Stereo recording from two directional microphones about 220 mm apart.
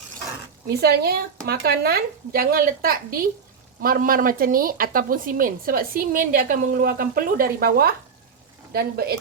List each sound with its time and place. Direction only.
0.7 s speech: 45° right (ahead or behind)